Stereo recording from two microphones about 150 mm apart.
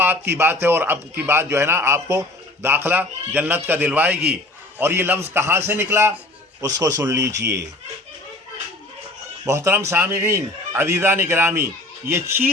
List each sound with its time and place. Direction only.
0.0 s a man's voice: 15° right (ahead or behind)
9.4 s a man's voice: 20° right (ahead or behind)